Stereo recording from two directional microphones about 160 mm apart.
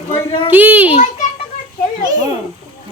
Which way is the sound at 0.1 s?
30° left (ahead or behind).